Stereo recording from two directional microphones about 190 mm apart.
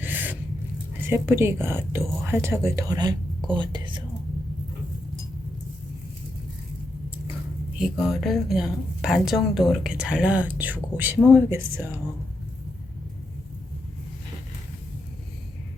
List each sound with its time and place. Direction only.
0.0 s a sound: 10° right (ahead or behind)
1.0 s speech: 10° right (ahead or behind)
7.9 s a woman's voice: centre (ahead or behind)